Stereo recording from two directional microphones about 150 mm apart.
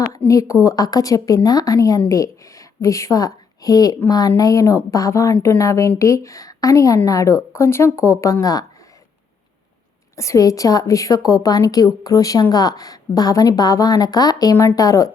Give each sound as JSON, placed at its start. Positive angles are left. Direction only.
{"t": 0.3, "sound": "a woman's voice", "side_deg": 20}
{"t": 10.2, "sound": "a woman's voice", "side_deg": 20}